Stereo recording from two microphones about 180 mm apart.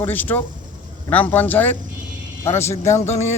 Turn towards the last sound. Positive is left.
turn(degrees=40)  # may be behind; listen again after turning